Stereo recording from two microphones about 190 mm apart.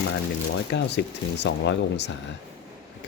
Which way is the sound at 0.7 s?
65° left (ahead or behind).